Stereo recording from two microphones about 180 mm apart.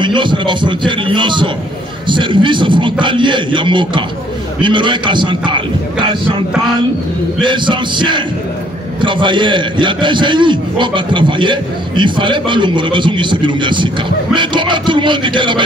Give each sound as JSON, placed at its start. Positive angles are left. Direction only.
{"t": 0.0, "sound": "a man's voice", "side_deg": -25}
{"t": 7.4, "sound": "a man's voice", "side_deg": -25}